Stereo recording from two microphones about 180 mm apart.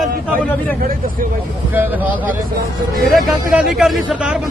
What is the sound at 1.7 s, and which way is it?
A man's voice, 10° right (ahead or behind).